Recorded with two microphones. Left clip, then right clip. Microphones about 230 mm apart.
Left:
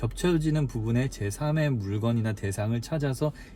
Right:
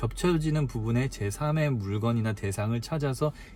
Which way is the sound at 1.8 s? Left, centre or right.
Centre.